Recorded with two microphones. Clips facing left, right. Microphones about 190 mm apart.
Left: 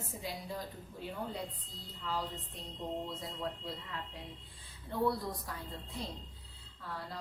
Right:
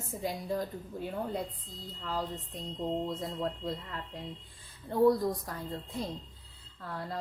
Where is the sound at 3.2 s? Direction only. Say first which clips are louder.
Right 6 dB; 45° right (ahead or behind).